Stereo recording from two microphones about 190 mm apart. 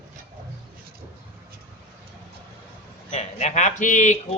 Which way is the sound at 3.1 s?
35° left (ahead or behind).